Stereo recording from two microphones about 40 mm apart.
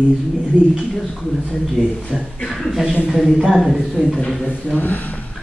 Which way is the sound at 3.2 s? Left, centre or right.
Centre.